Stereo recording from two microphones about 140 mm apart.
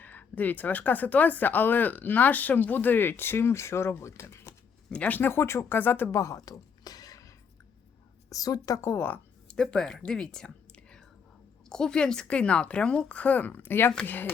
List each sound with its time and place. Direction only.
0.0 s a woman's voice: 10° left (ahead or behind)